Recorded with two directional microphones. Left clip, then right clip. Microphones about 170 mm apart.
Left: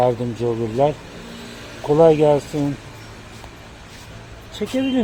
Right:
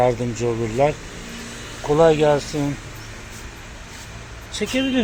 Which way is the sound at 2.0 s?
30° left (ahead or behind).